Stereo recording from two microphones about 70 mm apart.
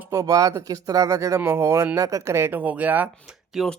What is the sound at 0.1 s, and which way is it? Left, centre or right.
Speech, right.